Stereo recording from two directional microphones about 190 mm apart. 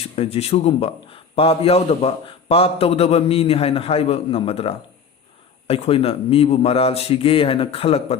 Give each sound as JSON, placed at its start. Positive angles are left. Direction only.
{"t": 0.0, "sound": "a man's voice", "side_deg": 30}